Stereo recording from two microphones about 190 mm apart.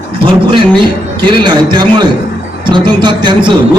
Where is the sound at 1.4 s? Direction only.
25° right (ahead or behind).